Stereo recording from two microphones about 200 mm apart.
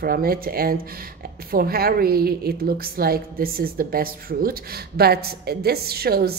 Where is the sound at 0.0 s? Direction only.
50° right (ahead or behind).